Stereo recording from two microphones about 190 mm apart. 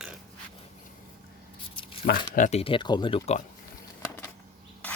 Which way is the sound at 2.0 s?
50° left (ahead or behind).